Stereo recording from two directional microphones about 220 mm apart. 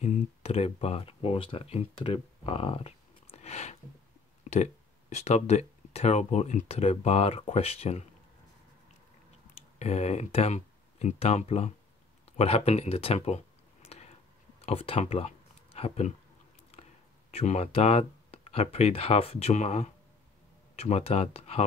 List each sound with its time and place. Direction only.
0.0 s speech: 30° left (ahead or behind)
3.3 s a sound: 30° left (ahead or behind)
5.1 s speech: 30° left (ahead or behind)
9.8 s speech: 30° left (ahead or behind)
13.8 s a sound: 25° left (ahead or behind)
14.6 s speech: 25° left (ahead or behind)
17.3 s speech: 30° left (ahead or behind)